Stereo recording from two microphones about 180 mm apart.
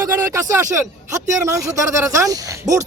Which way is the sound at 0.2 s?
20° right (ahead or behind).